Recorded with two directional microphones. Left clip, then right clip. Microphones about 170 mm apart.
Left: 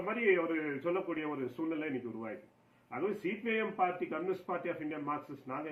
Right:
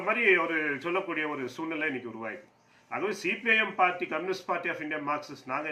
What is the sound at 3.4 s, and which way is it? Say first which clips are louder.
Speech: right 8 dB; 15° right (ahead or behind).